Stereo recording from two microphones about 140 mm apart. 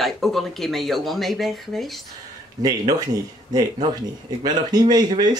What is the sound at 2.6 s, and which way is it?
Speech, 25° right (ahead or behind).